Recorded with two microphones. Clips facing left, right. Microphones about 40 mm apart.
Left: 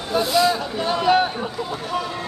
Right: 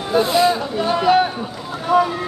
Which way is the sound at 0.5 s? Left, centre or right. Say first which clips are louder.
Right 3 dB; centre.